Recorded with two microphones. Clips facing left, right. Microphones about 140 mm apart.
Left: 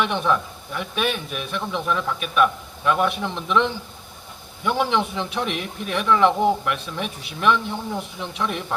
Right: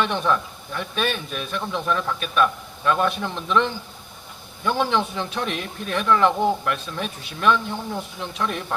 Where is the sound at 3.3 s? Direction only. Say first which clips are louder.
Left 1 dB; centre (ahead or behind).